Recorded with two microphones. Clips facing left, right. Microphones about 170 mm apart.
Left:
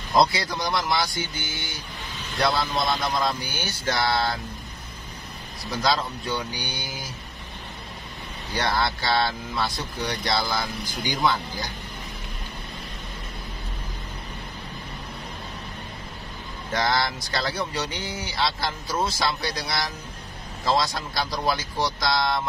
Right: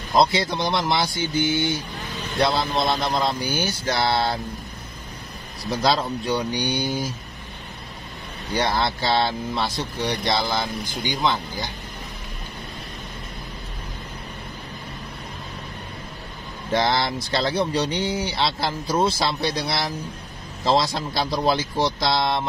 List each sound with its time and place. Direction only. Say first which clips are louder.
0.1 s speech: right 2 dB; 25° right (ahead or behind)
5.7 s speech: right 3 dB; 40° right (ahead or behind)
8.5 s speech: right 2 dB; 20° right (ahead or behind)
16.7 s speech: right 3 dB; 25° right (ahead or behind)